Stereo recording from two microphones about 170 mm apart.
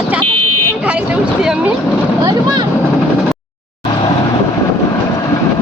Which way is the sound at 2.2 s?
25° right (ahead or behind).